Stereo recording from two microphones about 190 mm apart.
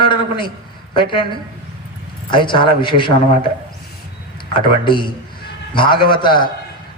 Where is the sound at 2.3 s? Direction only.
25° left (ahead or behind).